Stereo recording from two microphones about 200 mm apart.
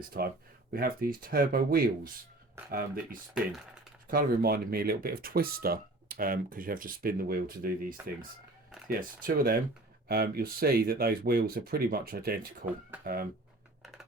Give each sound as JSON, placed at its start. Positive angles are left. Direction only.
{"t": 0.1, "sound": "speech", "side_deg": -50}